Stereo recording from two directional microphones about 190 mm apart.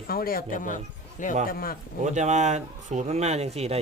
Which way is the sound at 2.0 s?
40° right (ahead or behind).